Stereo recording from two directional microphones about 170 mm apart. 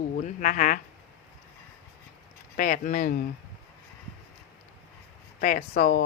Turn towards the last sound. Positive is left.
turn(degrees=60)  # may be behind; listen again after turning